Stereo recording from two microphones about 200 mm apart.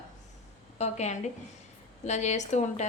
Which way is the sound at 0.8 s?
35° left (ahead or behind).